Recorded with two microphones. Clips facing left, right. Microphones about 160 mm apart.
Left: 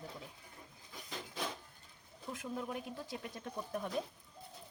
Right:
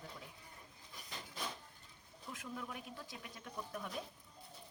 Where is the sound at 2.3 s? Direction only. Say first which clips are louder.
Left 6 dB; 30° left (ahead or behind).